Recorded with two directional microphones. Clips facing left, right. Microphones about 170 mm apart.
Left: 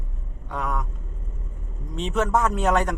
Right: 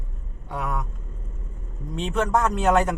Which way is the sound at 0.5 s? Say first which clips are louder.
Left 1 dB; 5° right (ahead or behind).